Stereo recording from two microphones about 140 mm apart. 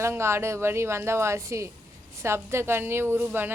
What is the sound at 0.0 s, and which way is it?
A woman's voice, 20° right (ahead or behind).